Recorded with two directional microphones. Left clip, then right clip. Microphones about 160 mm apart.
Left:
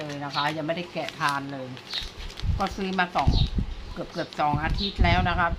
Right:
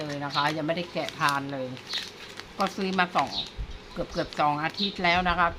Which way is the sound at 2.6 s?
15° right (ahead or behind).